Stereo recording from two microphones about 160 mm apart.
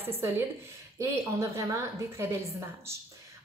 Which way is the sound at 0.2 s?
15° right (ahead or behind).